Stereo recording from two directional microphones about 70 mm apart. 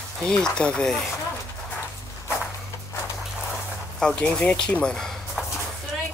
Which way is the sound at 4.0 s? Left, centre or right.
Centre.